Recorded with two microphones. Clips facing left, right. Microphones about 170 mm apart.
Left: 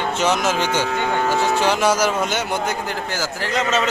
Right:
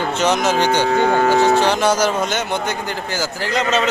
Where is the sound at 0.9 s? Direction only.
45° right (ahead or behind).